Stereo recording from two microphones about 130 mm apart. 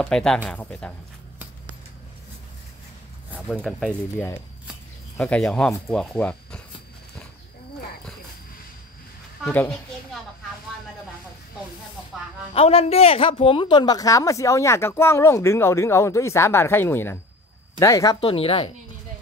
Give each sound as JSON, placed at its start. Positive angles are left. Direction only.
{"t": 0.0, "sound": "speech", "side_deg": 5}
{"t": 3.3, "sound": "speech", "side_deg": 5}
{"t": 5.2, "sound": "speech", "side_deg": 5}
{"t": 9.5, "sound": "speech", "side_deg": 15}
{"t": 12.5, "sound": "speech", "side_deg": 50}
{"t": 18.2, "sound": "a woman's voice", "side_deg": 45}